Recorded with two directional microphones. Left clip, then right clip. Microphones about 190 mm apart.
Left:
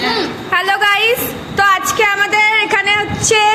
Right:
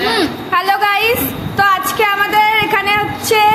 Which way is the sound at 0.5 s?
15° left (ahead or behind).